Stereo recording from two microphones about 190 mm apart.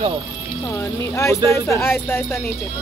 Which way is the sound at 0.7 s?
15° left (ahead or behind).